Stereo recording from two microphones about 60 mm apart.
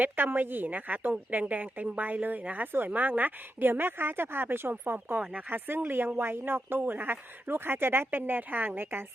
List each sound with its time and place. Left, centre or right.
0.0 s a woman's voice: right